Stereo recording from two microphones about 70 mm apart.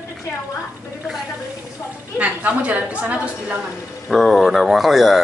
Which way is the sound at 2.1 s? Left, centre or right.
Centre.